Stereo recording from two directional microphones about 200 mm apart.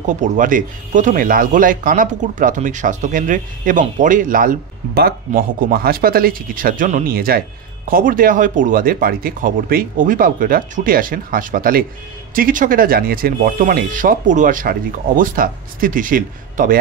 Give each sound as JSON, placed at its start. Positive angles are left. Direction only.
{"t": 0.0, "sound": "speech", "side_deg": -40}